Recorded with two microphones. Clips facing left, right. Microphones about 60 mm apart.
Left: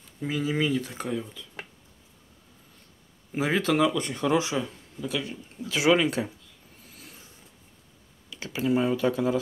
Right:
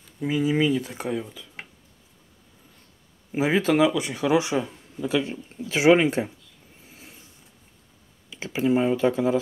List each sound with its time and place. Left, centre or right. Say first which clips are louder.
0.2 s speech: right 5 dB; centre
3.3 s speech: right 3 dB; centre
4.6 s speech: right 3 dB; right
6.8 s vehicle: right 1 dB; right
8.5 s speech: right 3 dB; right